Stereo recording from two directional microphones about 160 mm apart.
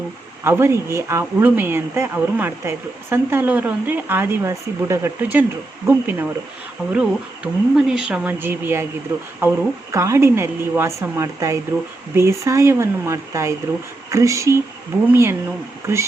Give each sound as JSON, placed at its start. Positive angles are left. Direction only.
{"t": 0.4, "sound": "speech", "side_deg": -15}